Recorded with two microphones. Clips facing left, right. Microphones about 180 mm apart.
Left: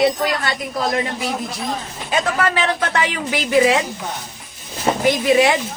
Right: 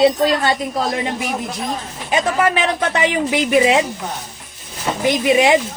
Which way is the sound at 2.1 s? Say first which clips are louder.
Right 3 dB; 20° right (ahead or behind).